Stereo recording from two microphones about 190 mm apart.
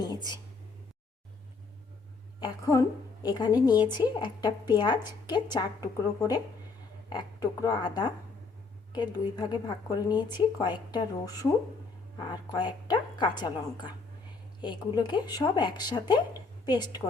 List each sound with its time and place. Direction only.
0.0 s a woman's voice: 20° left (ahead or behind)
2.4 s a woman's voice: 15° left (ahead or behind)
12.1 s a woman's voice: 25° left (ahead or behind)